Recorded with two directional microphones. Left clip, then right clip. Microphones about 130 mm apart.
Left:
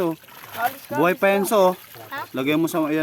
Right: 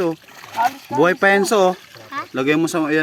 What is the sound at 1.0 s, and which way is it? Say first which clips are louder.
Speech: right 4 dB; 15° right (ahead or behind).